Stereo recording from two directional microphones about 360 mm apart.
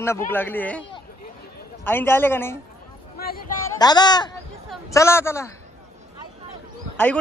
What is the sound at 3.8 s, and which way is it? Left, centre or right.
A man's voice, centre.